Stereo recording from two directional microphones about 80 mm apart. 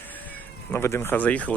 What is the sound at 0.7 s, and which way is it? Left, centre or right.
Speech, left.